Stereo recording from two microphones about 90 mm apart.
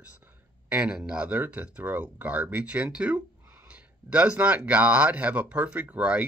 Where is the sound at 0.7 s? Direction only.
15° right (ahead or behind).